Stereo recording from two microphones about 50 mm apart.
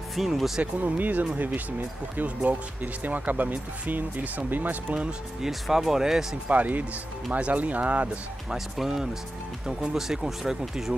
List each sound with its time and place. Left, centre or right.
0.1 s speech: centre
0.7 s speech: right
5.4 s speech: centre
6.5 s speech: right
8.5 s speech: centre